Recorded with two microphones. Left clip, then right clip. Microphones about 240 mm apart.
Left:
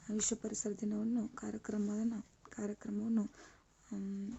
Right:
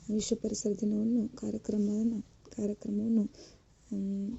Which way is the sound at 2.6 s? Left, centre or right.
Centre.